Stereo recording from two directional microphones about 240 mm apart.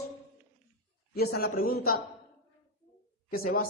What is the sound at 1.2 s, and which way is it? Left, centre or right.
Speech, left.